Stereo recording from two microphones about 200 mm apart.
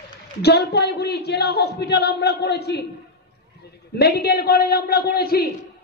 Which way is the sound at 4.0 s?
50° left (ahead or behind).